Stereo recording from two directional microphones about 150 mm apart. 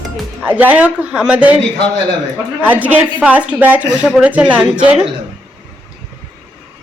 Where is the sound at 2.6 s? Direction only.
10° right (ahead or behind).